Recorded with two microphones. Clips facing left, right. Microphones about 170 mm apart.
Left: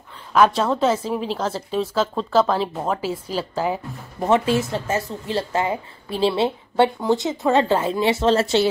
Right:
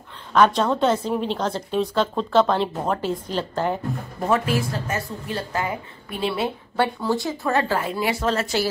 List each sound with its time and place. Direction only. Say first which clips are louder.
0.3 s a woman's voice: left 1 dB; 5° left (ahead or behind)
4.3 s a woman's voice: left 3 dB; 25° left (ahead or behind)